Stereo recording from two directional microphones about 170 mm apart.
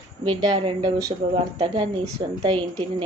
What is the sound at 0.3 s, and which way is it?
A woman's voice, 25° right (ahead or behind).